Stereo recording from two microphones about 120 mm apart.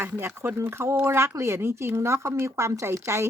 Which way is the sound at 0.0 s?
20° right (ahead or behind).